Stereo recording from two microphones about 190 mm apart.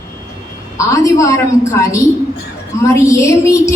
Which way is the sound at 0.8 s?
15° left (ahead or behind).